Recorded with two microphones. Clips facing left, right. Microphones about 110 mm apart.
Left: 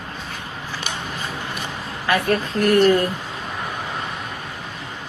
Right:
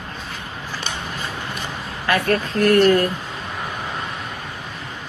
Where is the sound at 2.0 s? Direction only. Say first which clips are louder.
Even; 25° left (ahead or behind).